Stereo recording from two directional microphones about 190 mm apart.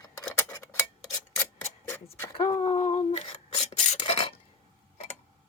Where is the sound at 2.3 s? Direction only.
25° left (ahead or behind).